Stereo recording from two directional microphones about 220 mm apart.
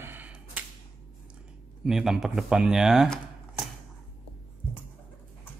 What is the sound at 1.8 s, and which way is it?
Speech, centre (ahead or behind).